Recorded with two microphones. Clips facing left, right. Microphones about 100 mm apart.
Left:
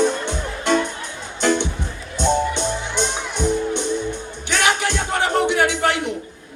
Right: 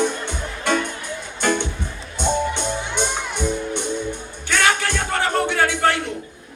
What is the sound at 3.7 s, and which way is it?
Music, 15° right (ahead or behind).